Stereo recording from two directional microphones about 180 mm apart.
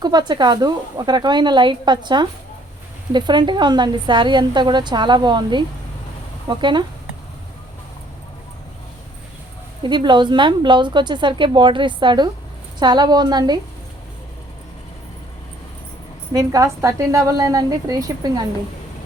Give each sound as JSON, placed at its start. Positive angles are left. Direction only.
{"t": 0.0, "sound": "a woman's voice", "side_deg": -25}
{"t": 9.8, "sound": "a woman's voice", "side_deg": -25}
{"t": 16.3, "sound": "a woman's voice", "side_deg": -20}